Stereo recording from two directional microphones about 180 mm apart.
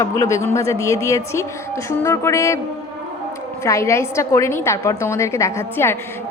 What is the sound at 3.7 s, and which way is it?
A woman's voice, 15° left (ahead or behind).